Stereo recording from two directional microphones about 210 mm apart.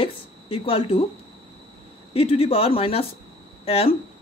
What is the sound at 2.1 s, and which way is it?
Speech, 25° left (ahead or behind).